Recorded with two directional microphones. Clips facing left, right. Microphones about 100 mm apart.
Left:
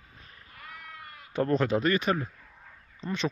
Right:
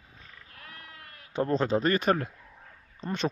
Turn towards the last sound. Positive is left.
turn(degrees=-45)  # may be behind; listen again after turning